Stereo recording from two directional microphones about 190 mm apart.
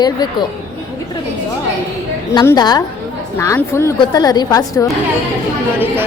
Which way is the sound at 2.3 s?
20° left (ahead or behind).